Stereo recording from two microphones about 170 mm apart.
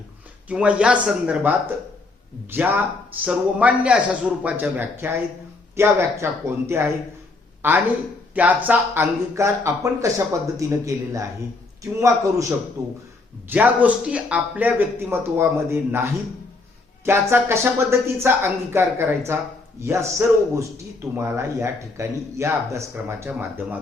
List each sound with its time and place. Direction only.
0.4 s speech: 5° right (ahead or behind)
8.4 s speech: 10° right (ahead or behind)
17.1 s speech: 15° right (ahead or behind)